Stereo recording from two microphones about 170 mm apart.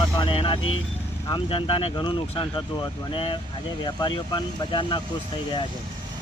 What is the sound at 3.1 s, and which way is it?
Speech, 30° left (ahead or behind).